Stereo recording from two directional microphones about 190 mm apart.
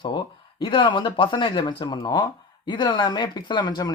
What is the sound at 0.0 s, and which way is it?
Speech, 25° left (ahead or behind).